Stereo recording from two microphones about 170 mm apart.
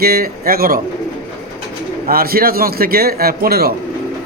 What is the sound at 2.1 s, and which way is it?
A man's voice, 60° right (ahead or behind).